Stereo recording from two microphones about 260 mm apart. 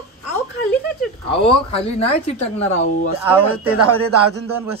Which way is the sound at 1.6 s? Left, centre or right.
Left.